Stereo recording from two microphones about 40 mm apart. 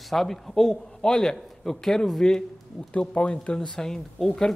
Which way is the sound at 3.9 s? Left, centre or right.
Centre.